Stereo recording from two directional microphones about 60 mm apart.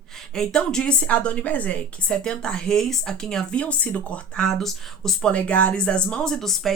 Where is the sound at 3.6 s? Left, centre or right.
Left.